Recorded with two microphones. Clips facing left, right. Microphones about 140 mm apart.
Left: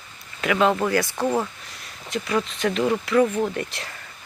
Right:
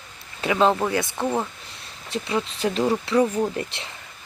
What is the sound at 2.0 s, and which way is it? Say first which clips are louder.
Speech: left 1 dB; 30° right (ahead or behind).